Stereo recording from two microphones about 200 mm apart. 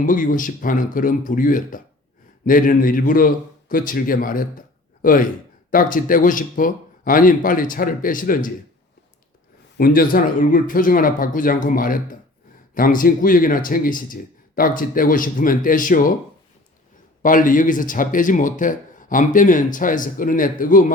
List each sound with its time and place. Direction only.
0.0 s speech: 40° left (ahead or behind)
9.7 s speech: 45° left (ahead or behind)
17.2 s speech: 45° left (ahead or behind)